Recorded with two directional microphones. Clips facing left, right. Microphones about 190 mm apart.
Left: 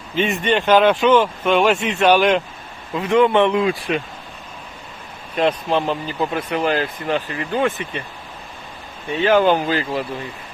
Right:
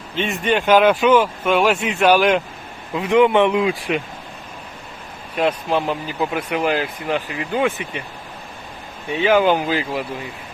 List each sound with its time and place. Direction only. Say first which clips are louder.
0.2 s speech: left 1 dB; centre (ahead or behind)
2.9 s speech: right 1 dB; 15° right (ahead or behind)
5.4 s speech: left 1 dB; 5° right (ahead or behind)
9.0 s speech: left 1 dB; 10° right (ahead or behind)